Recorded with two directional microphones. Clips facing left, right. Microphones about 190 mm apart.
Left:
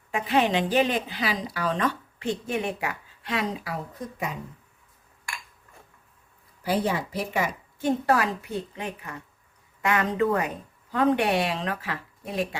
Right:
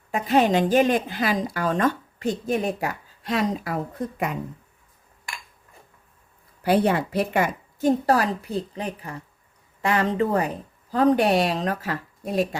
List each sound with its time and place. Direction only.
0.1 s a woman's voice: 40° right (ahead or behind); by 4.4 s 60° right (ahead or behind)
6.6 s speech: 65° right (ahead or behind)
7.8 s speech: 35° right (ahead or behind)